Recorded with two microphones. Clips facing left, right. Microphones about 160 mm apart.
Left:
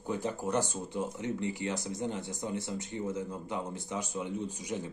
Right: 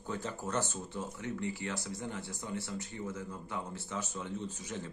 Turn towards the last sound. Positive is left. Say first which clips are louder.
# left 4 dB
turn(degrees=15)  # may be behind; listen again after turning